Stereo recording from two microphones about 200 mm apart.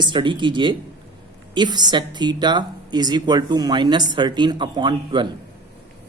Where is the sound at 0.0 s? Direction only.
25° right (ahead or behind).